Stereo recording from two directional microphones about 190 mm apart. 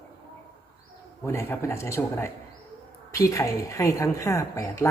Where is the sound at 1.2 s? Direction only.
15° left (ahead or behind).